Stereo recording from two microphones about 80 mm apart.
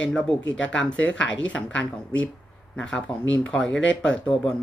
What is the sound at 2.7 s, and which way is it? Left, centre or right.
Speech, centre.